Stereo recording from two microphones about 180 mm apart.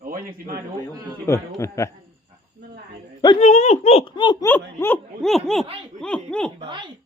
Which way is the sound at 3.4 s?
40° left (ahead or behind).